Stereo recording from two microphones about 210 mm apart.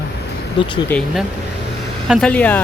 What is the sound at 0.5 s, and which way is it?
Speech, 25° left (ahead or behind).